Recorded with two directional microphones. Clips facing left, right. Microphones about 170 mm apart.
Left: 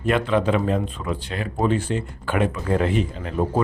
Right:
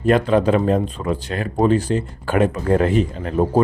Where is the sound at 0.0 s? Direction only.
40° right (ahead or behind).